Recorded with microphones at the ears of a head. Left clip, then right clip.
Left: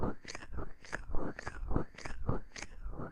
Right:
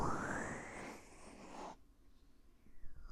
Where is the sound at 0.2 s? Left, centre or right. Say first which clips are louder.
Right 5 dB; right.